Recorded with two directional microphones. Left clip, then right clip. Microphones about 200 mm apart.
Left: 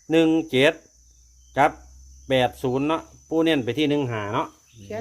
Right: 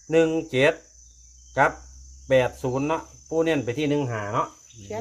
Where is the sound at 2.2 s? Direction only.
50° left (ahead or behind).